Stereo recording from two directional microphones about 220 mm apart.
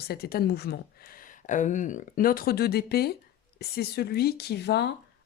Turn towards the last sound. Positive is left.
turn(degrees=50)  # may be behind; listen again after turning